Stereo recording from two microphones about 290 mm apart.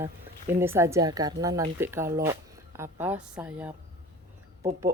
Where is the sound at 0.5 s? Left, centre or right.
Centre.